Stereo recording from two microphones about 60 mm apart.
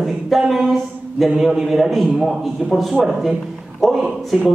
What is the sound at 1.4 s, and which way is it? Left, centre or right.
A man's voice, centre.